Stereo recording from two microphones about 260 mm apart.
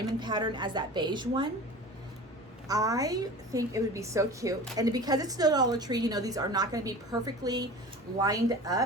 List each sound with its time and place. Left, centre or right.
0.2 s a woman's voice: centre
2.6 s a woman's voice: centre